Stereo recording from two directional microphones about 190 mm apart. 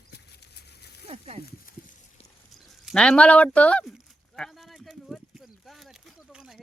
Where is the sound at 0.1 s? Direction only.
60° left (ahead or behind).